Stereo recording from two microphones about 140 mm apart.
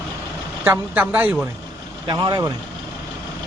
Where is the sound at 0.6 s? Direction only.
10° right (ahead or behind).